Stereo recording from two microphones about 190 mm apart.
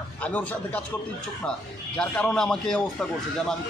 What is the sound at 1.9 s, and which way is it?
A man's voice, 5° left (ahead or behind).